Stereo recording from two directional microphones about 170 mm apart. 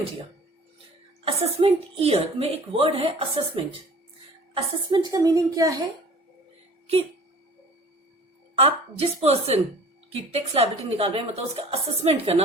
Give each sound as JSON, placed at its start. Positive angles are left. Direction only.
{"t": 1.2, "sound": "a woman's voice", "side_deg": -35}
{"t": 8.5, "sound": "a woman's voice", "side_deg": -35}